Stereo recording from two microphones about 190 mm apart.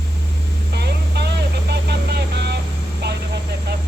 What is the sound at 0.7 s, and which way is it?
Vehicle, 60° right (ahead or behind).